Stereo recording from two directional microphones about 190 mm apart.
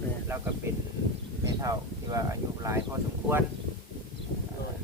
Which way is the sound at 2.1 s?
15° right (ahead or behind).